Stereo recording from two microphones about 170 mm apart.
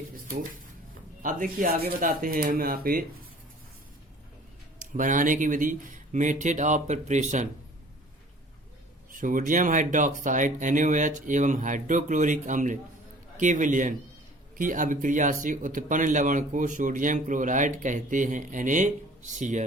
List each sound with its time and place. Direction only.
1.2 s speech: 50° right (ahead or behind)
4.8 s speech: 50° right (ahead or behind)
9.1 s speech: 50° right (ahead or behind)